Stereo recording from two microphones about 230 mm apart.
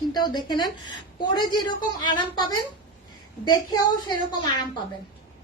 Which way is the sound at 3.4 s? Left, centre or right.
Centre.